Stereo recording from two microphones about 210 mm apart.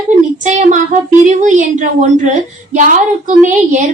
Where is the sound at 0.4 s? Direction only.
35° right (ahead or behind).